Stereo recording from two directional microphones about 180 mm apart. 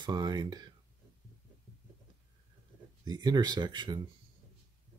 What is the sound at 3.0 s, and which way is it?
Speech, 20° right (ahead or behind).